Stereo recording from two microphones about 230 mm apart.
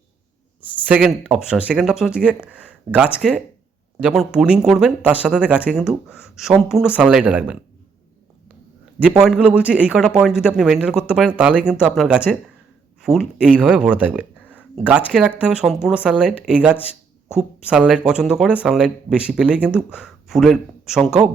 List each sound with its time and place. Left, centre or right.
0.9 s speech: centre
9.0 s speech: centre